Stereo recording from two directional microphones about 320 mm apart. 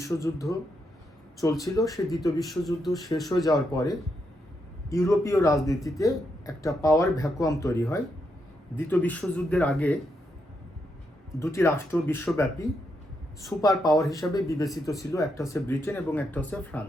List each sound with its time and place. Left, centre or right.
0.2 s speech: centre
1.9 s a man's voice: centre
3.3 s a man's voice: centre
11.3 s speech: centre